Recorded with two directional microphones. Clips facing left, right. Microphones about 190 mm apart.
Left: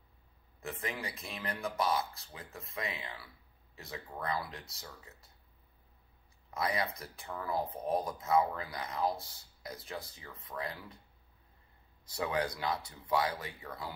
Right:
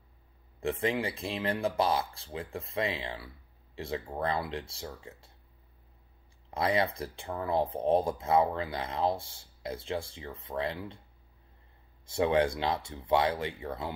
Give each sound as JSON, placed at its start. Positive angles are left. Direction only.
{"t": 0.6, "sound": "speech", "side_deg": -30}
{"t": 6.5, "sound": "speech", "side_deg": -30}
{"t": 12.1, "sound": "speech", "side_deg": -25}